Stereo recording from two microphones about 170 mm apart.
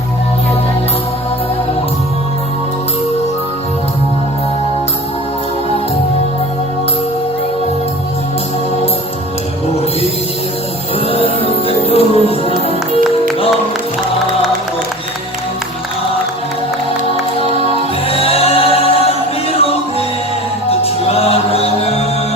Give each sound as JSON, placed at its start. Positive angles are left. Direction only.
{"t": 11.1, "sound": "music", "side_deg": 35}
{"t": 18.1, "sound": "music", "side_deg": 35}
{"t": 20.7, "sound": "music", "side_deg": 35}